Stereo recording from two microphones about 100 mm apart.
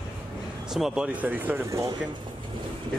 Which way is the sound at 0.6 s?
5° right (ahead or behind).